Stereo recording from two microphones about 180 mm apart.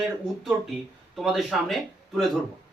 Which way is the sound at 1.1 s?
Centre (ahead or behind).